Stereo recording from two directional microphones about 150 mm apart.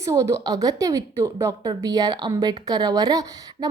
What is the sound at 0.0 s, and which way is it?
A woman's voice, 20° right (ahead or behind).